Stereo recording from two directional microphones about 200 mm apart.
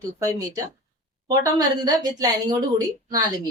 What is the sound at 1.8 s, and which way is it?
Speech, 20° right (ahead or behind).